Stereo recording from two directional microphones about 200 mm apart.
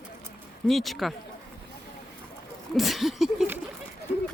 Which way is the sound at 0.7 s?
Centre (ahead or behind).